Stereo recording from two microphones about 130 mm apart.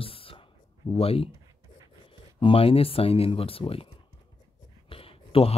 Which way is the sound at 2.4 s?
45° left (ahead or behind).